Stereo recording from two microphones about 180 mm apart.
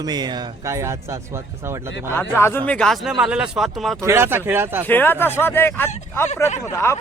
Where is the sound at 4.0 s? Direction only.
15° right (ahead or behind).